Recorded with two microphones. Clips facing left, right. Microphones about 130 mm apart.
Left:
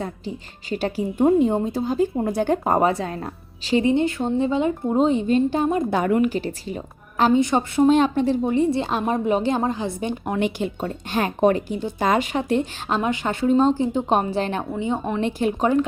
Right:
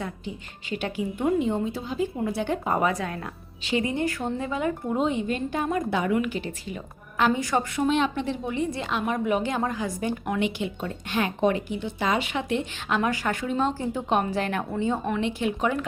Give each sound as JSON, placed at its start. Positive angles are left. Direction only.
{"t": 0.7, "sound": "a woman's voice", "side_deg": 35}
{"t": 2.9, "sound": "speech", "side_deg": 30}
{"t": 5.9, "sound": "speech", "side_deg": 45}
{"t": 7.9, "sound": "speech", "side_deg": 40}
{"t": 10.4, "sound": "speech", "side_deg": 40}
{"t": 13.0, "sound": "speech", "side_deg": 25}
{"t": 13.7, "sound": "speech", "side_deg": 20}
{"t": 15.2, "sound": "speech", "side_deg": 40}